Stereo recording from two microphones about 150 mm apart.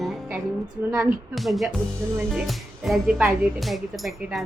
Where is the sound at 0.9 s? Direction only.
15° right (ahead or behind).